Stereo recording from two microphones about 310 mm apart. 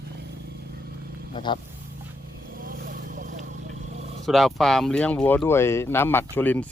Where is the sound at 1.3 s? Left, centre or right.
Centre.